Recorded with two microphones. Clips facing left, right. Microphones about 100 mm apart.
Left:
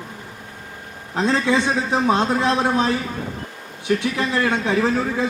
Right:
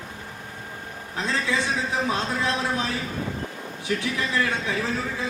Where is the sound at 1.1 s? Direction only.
35° left (ahead or behind).